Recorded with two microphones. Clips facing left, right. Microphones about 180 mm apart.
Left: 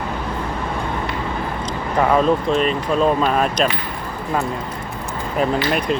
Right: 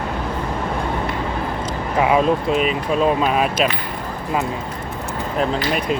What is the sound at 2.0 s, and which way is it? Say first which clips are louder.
Speech: even; 5° right (ahead or behind).